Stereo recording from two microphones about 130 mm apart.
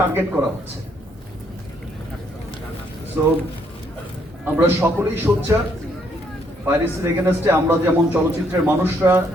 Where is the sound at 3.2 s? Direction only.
15° right (ahead or behind).